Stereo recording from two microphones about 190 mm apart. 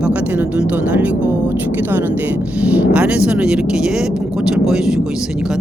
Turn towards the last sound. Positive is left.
turn(degrees=-5)  # may be behind; listen again after turning